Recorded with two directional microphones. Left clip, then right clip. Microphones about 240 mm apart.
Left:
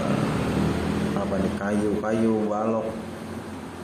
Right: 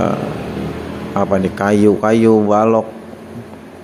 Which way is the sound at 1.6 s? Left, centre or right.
Right.